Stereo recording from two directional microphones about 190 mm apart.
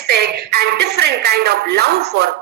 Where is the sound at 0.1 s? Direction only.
60° right (ahead or behind).